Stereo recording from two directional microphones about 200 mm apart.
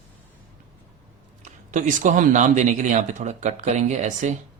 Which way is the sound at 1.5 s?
40° right (ahead or behind).